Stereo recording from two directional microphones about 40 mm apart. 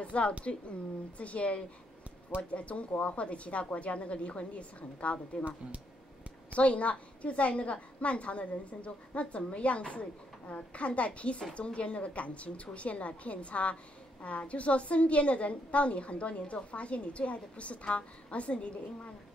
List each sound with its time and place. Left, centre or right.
0.0 s a woman's voice: left
6.5 s a woman's voice: left